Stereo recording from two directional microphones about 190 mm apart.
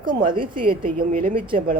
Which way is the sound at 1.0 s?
50° right (ahead or behind).